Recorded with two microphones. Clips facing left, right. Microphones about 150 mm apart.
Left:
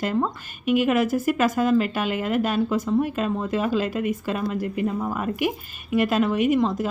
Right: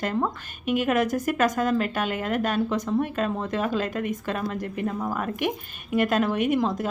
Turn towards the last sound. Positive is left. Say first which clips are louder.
# left 3 dB
turn(degrees=0)  # may be behind; listen again after turning